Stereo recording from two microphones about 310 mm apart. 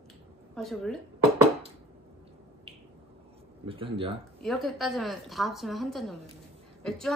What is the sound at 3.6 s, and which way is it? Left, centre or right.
Speech, centre.